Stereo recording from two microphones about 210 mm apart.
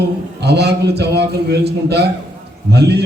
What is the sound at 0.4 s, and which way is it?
A man's voice, 50° right (ahead or behind).